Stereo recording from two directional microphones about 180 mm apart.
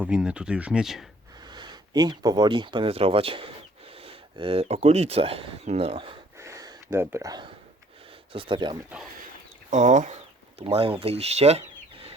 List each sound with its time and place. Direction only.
0.0 s speech: 5° right (ahead or behind)
1.5 s speech: 25° right (ahead or behind)
6.4 s a sound: 20° right (ahead or behind)
8.3 s speech: 30° right (ahead or behind)
9.6 s speech: 40° right (ahead or behind)